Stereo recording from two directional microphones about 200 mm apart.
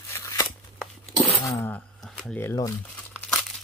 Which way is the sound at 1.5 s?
10° left (ahead or behind).